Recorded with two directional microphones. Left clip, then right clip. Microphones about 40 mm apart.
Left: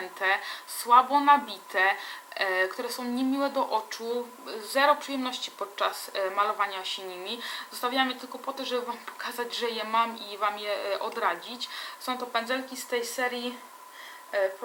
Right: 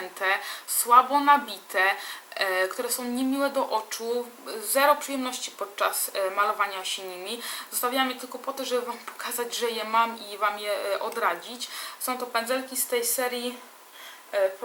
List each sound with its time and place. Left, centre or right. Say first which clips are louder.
0.0 s speech: right 1 dB; centre
4.4 s speech: right 2 dB; centre
13.0 s speech: right 3 dB; right
13.2 s speech: right 1 dB; right